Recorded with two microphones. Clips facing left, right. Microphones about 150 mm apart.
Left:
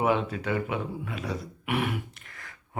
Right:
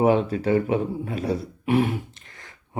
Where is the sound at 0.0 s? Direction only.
35° right (ahead or behind).